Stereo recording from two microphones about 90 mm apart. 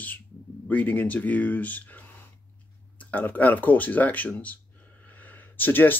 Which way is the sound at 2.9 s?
20° left (ahead or behind).